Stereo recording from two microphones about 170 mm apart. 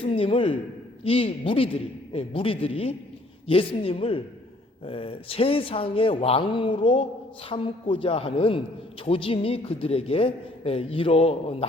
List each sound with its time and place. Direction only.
0.0 s a woman's voice: 35° left (ahead or behind)